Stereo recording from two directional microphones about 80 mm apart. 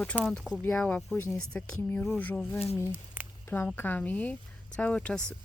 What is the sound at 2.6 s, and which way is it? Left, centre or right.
Speech, left.